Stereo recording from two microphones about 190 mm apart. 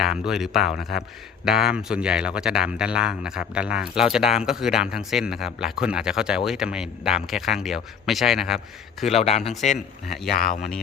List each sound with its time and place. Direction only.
0.0 s speech: 5° right (ahead or behind)
9.0 s speech: 35° left (ahead or behind)
9.4 s speech: centre (ahead or behind)
10.3 s speech: 50° left (ahead or behind)